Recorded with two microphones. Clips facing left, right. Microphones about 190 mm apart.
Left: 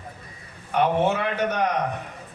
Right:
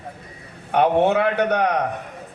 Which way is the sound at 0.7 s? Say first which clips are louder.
Right 4 dB; 65° right (ahead or behind).